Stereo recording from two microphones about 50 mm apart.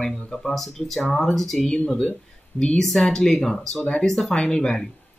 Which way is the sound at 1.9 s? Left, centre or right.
Left.